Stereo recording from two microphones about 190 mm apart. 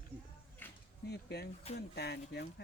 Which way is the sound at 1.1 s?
60° left (ahead or behind).